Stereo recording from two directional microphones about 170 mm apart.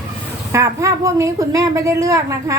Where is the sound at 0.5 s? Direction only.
15° right (ahead or behind).